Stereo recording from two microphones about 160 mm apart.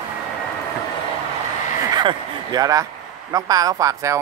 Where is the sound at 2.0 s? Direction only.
25° right (ahead or behind).